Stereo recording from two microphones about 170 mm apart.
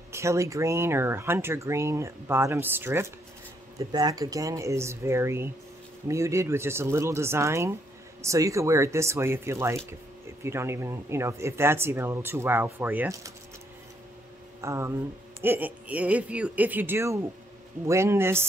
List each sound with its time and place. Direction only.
0.1 s speech: 15° right (ahead or behind)
14.6 s speech: 15° right (ahead or behind)